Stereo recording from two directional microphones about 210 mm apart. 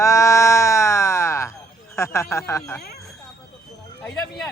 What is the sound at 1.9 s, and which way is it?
Speech, 15° left (ahead or behind).